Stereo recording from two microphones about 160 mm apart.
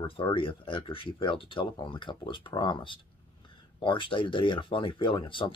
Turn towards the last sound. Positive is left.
turn(degrees=30)  # may be behind; listen again after turning